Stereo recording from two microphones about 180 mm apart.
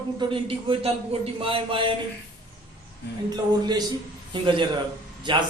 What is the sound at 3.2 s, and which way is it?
A man's voice, 20° right (ahead or behind).